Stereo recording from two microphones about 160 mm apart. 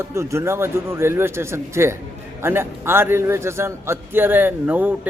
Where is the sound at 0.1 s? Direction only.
15° right (ahead or behind).